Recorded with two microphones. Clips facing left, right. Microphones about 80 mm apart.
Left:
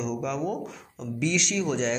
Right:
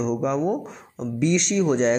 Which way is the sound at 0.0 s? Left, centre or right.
Right.